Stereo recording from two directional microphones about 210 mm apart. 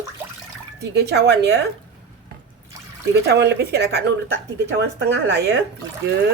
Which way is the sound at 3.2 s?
50° right (ahead or behind).